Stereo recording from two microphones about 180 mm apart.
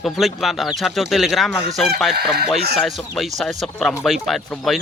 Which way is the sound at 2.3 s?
65° right (ahead or behind).